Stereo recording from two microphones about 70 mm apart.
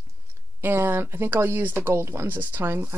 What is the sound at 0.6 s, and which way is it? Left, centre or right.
Speech, right.